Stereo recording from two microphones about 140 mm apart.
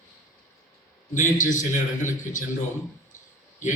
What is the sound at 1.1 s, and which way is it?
A man's voice, 65° left (ahead or behind).